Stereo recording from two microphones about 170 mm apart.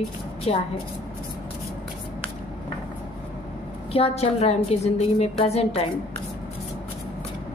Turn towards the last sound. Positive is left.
turn(degrees=35)  # may be behind; listen again after turning